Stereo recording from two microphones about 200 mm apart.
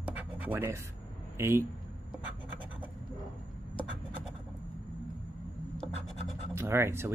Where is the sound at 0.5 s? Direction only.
10° right (ahead or behind).